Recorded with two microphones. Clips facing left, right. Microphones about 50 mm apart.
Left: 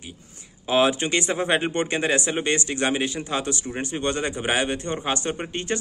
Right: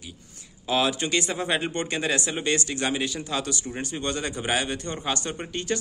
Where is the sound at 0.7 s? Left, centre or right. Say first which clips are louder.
Left 4 dB; left.